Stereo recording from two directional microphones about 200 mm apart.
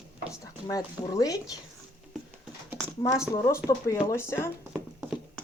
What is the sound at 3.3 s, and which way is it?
Speech, 15° left (ahead or behind).